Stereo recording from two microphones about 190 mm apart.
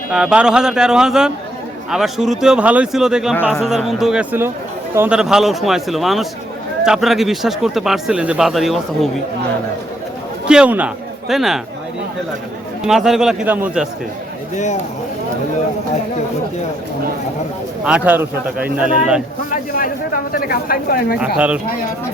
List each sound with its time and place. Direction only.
0.1 s speech: 5° right (ahead or behind)
10.4 s speech: 5° right (ahead or behind)
12.8 s speech: centre (ahead or behind)
14.5 s speech: 40° left (ahead or behind)
17.8 s speech: 5° right (ahead or behind)
19.5 s speech: 45° left (ahead or behind)
21.2 s speech: 5° right (ahead or behind)